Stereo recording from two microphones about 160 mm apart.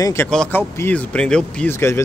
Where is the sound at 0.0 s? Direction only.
15° left (ahead or behind).